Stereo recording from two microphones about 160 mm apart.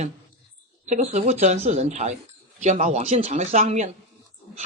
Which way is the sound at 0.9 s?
45° right (ahead or behind).